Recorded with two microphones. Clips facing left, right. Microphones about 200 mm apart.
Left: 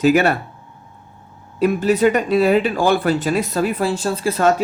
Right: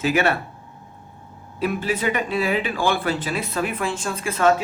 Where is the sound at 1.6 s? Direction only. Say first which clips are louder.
Left 8 dB; 45° left (ahead or behind).